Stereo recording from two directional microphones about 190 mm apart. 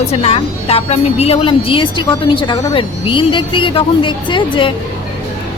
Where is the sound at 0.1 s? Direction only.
30° left (ahead or behind).